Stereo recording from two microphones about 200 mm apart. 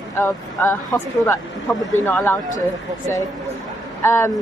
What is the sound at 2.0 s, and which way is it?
Speech, 10° left (ahead or behind).